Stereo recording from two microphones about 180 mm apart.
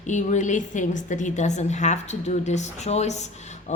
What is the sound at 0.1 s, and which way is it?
A woman's voice, 45° left (ahead or behind).